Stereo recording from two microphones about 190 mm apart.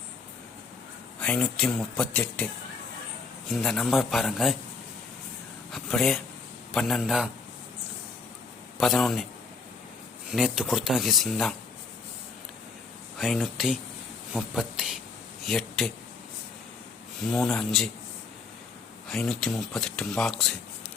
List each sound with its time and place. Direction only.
1.2 s speech: 5° left (ahead or behind)
3.5 s speech: centre (ahead or behind)
5.7 s speech: centre (ahead or behind)
8.8 s speech: centre (ahead or behind)
10.3 s speech: 5° right (ahead or behind)
13.1 s speech: centre (ahead or behind)
17.2 s speech: centre (ahead or behind)
19.0 s speech: centre (ahead or behind)